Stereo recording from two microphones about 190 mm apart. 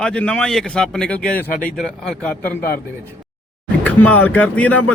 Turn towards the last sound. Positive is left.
turn(degrees=10)  # may be behind; listen again after turning